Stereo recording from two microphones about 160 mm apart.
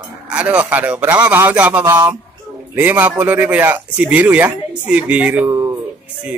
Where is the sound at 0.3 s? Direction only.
10° right (ahead or behind).